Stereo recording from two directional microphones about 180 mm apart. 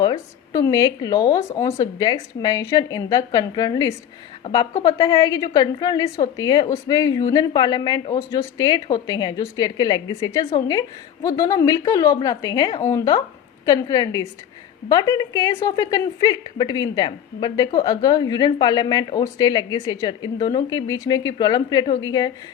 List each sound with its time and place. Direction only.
0.0 s a woman's voice: 20° left (ahead or behind)